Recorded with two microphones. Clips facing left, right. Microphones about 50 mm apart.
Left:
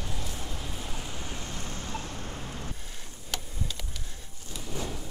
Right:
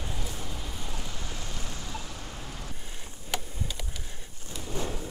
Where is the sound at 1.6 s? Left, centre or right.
Left.